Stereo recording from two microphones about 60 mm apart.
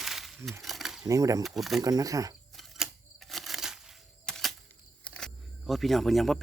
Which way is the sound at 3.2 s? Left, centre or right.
Centre.